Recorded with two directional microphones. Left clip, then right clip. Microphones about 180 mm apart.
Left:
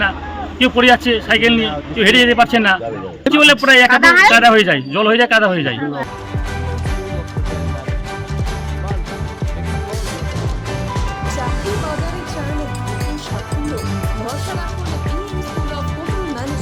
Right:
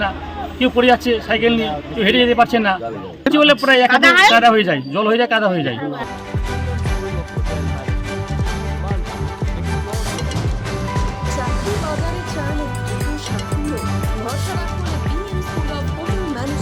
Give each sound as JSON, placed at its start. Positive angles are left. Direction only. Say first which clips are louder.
{"t": 0.6, "sound": "a man's voice", "louder": "left 3 dB", "side_deg": 5}
{"t": 3.9, "sound": "speech", "louder": "left 2 dB", "side_deg": -60}
{"t": 4.3, "sound": "a man's voice", "louder": "left 3 dB", "side_deg": 5}